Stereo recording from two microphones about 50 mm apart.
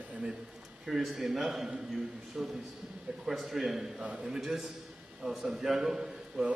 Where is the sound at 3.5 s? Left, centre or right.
Centre.